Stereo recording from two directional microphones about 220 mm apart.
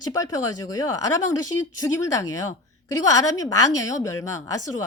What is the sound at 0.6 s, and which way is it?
A woman's voice, 15° left (ahead or behind).